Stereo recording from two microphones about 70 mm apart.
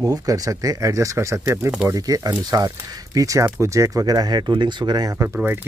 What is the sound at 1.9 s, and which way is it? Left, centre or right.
Speech, right.